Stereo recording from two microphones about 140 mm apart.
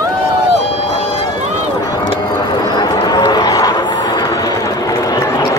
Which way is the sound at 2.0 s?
30° left (ahead or behind).